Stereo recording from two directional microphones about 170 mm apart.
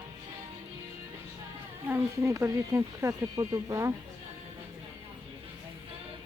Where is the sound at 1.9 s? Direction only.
15° right (ahead or behind).